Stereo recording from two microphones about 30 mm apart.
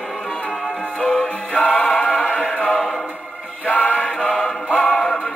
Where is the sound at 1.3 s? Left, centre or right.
Left.